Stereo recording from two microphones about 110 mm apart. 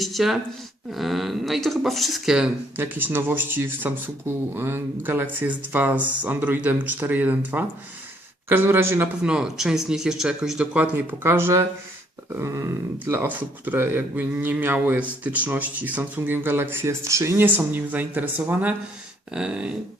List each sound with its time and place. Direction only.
0.0 s speech: centre (ahead or behind)
2.7 s speech: 20° right (ahead or behind)
9.2 s speech: 5° right (ahead or behind)